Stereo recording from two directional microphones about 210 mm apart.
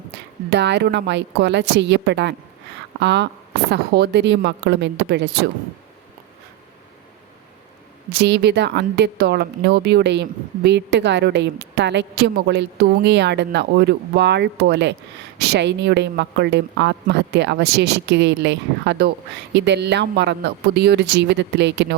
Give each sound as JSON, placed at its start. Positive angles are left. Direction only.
{"t": 0.5, "sound": "speech", "side_deg": -55}
{"t": 8.2, "sound": "speech", "side_deg": -55}